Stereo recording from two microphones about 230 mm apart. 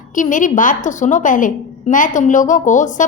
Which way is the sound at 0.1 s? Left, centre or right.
Left.